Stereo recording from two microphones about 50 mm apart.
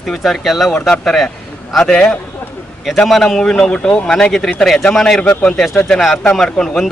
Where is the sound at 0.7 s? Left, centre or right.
Centre.